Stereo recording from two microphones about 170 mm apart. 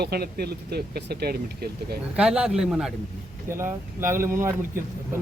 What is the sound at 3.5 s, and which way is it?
Speech, 15° right (ahead or behind).